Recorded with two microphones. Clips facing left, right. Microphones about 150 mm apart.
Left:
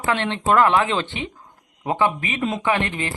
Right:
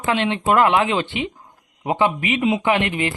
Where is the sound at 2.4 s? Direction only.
5° right (ahead or behind).